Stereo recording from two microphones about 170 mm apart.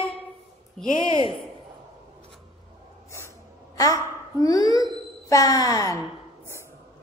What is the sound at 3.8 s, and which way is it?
A woman's voice, 20° left (ahead or behind).